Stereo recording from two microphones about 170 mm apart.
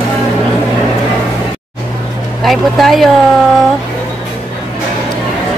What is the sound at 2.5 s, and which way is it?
Speech, centre (ahead or behind).